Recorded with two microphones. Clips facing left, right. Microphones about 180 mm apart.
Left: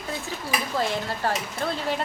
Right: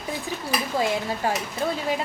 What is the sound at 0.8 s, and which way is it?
A woman's voice, 15° right (ahead or behind).